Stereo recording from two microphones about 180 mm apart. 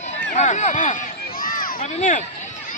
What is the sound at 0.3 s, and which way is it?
Run, 40° left (ahead or behind).